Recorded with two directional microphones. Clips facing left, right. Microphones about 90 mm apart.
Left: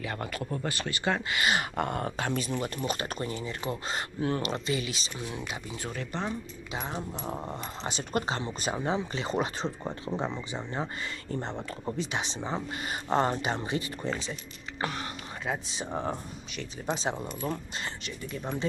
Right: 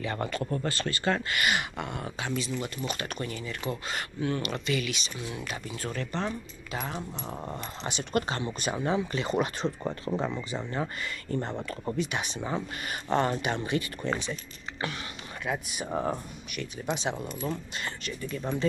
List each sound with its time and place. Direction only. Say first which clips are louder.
0.0 s speech: right 3 dB; centre (ahead or behind)
1.4 s speech: left 3 dB; 35° left (ahead or behind)
1.8 s speech: left 4 dB; 45° left (ahead or behind); by 5.4 s 30° left (ahead or behind)
5.4 s speech: right 1 dB; 15° left (ahead or behind)
7.8 s speech: right 2 dB; 30° left (ahead or behind)
12.0 s speech: right 1 dB; 25° left (ahead or behind)